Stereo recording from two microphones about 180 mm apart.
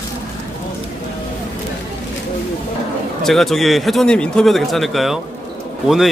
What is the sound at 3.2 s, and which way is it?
Speech, centre (ahead or behind).